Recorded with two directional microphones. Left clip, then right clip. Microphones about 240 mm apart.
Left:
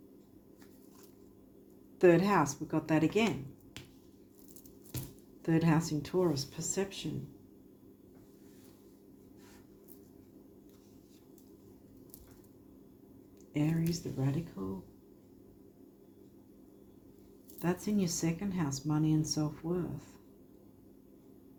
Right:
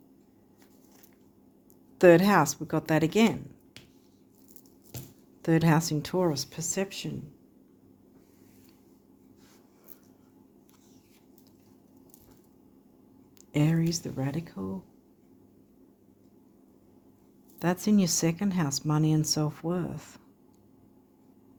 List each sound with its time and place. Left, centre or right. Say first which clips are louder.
2.0 s speech: right 7 dB; right
5.4 s speech: right 6 dB; right
13.5 s speech: right 6 dB; right
17.6 s speech: right 7 dB; right